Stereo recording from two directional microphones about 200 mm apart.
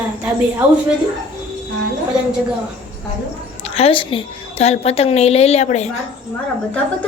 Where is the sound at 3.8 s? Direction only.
25° left (ahead or behind).